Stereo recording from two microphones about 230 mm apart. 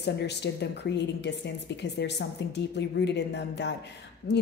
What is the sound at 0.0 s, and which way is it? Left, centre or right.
Speech, left.